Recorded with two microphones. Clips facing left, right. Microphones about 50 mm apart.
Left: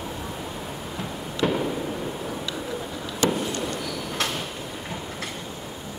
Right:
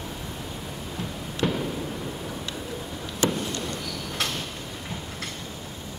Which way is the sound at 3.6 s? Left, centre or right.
Centre.